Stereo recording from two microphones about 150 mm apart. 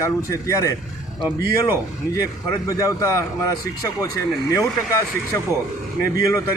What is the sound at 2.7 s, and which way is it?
Speech, 20° left (ahead or behind).